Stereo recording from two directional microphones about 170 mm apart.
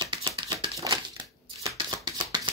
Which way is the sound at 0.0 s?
30° right (ahead or behind).